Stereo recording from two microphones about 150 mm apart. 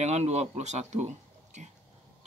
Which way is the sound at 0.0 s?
50° right (ahead or behind).